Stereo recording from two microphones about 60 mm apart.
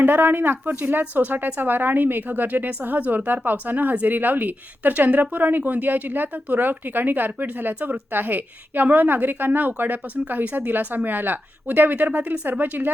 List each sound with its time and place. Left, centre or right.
0.0 s speech: right